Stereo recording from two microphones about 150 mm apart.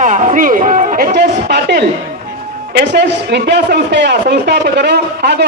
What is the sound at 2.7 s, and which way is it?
Speech, 90° right.